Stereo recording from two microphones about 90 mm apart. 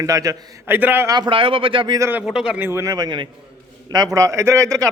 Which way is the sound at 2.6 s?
30° right (ahead or behind).